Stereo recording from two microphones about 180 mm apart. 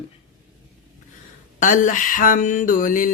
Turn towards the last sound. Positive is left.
turn(degrees=45)  # may be behind; listen again after turning